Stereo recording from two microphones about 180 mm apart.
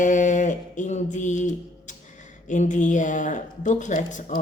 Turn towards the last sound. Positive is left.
turn(degrees=45)  # may be behind; listen again after turning